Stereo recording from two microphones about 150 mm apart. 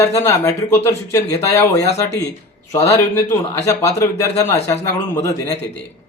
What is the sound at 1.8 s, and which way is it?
Speech, 45° left (ahead or behind).